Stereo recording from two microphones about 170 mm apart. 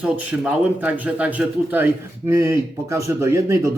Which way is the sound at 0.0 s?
10° right (ahead or behind).